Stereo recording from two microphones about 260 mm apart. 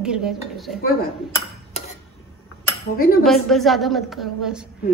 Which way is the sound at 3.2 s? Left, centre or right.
Centre.